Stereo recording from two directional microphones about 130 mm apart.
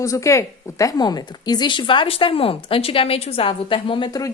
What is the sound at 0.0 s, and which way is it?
A woman's voice, 25° left (ahead or behind).